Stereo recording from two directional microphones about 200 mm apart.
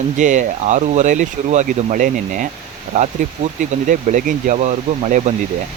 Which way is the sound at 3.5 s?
40° right (ahead or behind).